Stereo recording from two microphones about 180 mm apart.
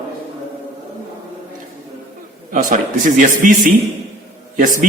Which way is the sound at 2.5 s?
45° right (ahead or behind).